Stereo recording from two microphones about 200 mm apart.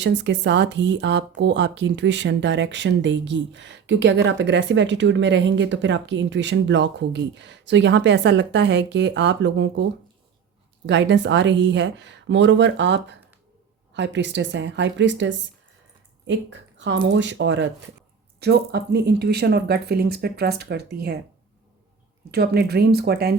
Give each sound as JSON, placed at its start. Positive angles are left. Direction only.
{"t": 0.0, "sound": "speech", "side_deg": -60}
{"t": 10.8, "sound": "speech", "side_deg": -65}
{"t": 22.3, "sound": "speech", "side_deg": -55}